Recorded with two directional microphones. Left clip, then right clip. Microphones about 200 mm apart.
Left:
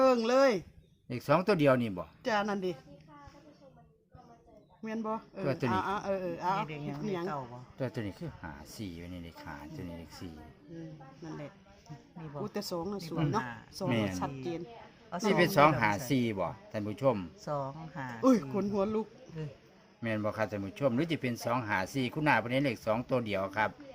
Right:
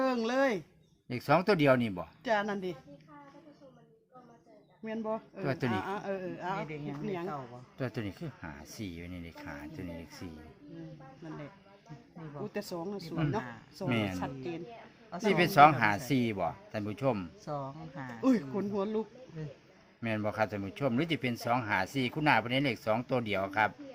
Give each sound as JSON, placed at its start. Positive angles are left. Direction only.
{"t": 0.0, "sound": "speech", "side_deg": 25}
{"t": 1.0, "sound": "speech", "side_deg": -5}
{"t": 2.2, "sound": "a man's voice", "side_deg": 25}
{"t": 4.9, "sound": "a man's voice", "side_deg": 20}
{"t": 7.8, "sound": "speech", "side_deg": -5}
{"t": 12.4, "sound": "a man's voice", "side_deg": 30}
{"t": 13.8, "sound": "speech", "side_deg": -5}
{"t": 14.2, "sound": "a man's voice", "side_deg": 25}
{"t": 15.4, "sound": "speech", "side_deg": -5}
{"t": 17.4, "sound": "speech", "side_deg": 45}
{"t": 18.2, "sound": "a man's voice", "side_deg": 30}
{"t": 20.0, "sound": "speech", "side_deg": -5}